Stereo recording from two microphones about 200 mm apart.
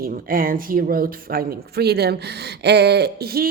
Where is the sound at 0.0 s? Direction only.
45° right (ahead or behind).